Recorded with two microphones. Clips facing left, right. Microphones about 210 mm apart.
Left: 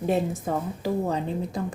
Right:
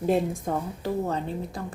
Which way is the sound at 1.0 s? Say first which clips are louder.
Left 2 dB; 20° left (ahead or behind).